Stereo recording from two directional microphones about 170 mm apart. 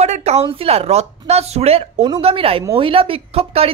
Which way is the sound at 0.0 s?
40° right (ahead or behind).